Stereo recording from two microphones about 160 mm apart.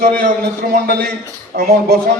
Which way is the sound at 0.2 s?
60° right (ahead or behind).